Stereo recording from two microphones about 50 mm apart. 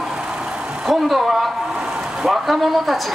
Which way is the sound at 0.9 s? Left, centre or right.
Centre.